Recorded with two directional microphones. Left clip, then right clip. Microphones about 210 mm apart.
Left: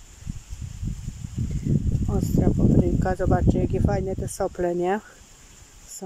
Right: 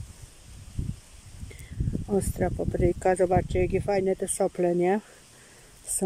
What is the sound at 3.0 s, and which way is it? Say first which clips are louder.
Speech: right 1 dB; 15° right (ahead or behind).